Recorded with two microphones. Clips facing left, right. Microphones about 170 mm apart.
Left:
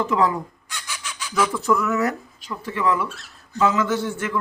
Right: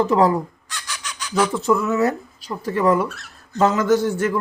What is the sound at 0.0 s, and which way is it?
Speech, 35° right (ahead or behind).